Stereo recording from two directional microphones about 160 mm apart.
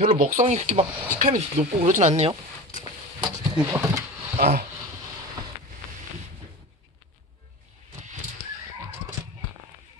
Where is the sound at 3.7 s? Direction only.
15° right (ahead or behind).